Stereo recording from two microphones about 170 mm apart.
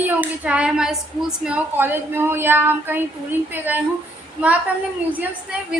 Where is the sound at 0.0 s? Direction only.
10° right (ahead or behind).